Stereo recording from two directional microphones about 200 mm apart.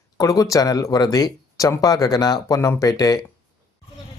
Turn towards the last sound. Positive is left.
turn(degrees=15)  # may be behind; listen again after turning